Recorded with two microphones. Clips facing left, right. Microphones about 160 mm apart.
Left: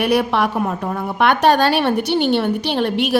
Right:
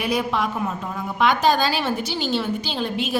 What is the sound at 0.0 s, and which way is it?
A woman's voice, 65° left (ahead or behind).